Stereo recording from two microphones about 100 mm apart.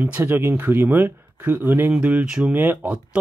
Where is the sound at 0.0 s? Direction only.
25° right (ahead or behind).